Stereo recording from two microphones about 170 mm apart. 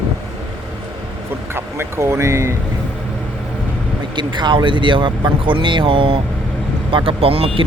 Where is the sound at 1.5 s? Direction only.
15° right (ahead or behind).